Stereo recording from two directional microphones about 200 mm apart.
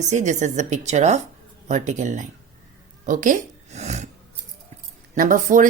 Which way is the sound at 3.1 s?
40° right (ahead or behind).